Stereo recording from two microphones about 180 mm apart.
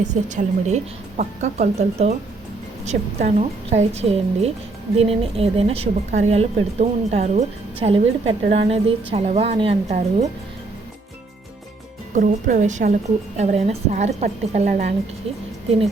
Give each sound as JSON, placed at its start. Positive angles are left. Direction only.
{"t": 0.0, "sound": "a woman's voice", "side_deg": -45}
{"t": 12.1, "sound": "a woman's voice", "side_deg": -45}